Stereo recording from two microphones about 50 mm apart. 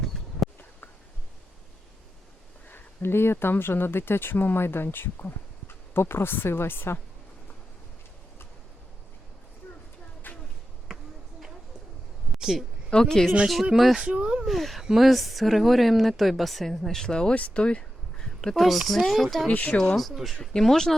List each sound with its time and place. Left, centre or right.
0.1 s a sound: centre
2.6 s speech: left
5.9 s speech: left
10.3 s a sound: left
12.3 s a sound: centre
12.9 s speech: centre
13.7 s speech: centre
14.0 s speech: right
14.4 s speech: centre
17.3 s speech: left
18.3 s speech: centre
19.5 s speech: left
20.0 s speech: centre